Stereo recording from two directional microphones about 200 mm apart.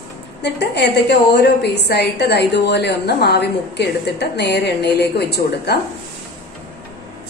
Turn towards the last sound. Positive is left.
turn(degrees=55)  # may be behind; listen again after turning